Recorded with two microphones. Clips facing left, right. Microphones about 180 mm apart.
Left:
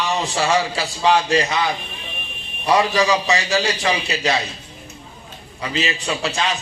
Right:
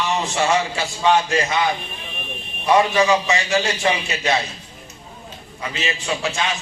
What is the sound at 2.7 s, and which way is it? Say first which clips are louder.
A man's voice: right 1 dB; 35° left (ahead or behind).